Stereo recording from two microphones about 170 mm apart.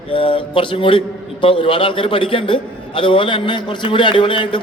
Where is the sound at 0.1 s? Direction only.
30° left (ahead or behind).